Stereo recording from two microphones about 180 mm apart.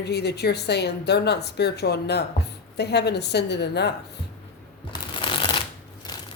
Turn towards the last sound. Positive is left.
turn(degrees=20)  # may be behind; listen again after turning